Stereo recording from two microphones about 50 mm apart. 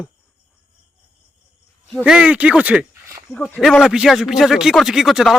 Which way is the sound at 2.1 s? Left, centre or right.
Right.